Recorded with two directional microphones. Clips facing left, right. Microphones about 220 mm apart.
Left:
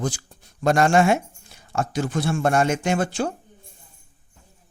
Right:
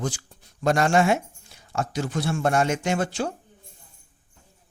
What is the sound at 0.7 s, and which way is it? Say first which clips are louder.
Speech: left 2 dB; 50° left (ahead or behind).